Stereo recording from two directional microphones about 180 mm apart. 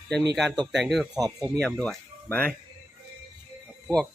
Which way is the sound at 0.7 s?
Centre (ahead or behind).